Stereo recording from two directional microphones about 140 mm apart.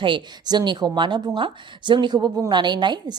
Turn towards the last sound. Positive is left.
turn(degrees=-30)  # may be behind; listen again after turning